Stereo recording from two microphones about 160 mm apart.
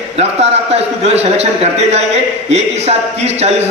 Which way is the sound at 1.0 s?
40° right (ahead or behind).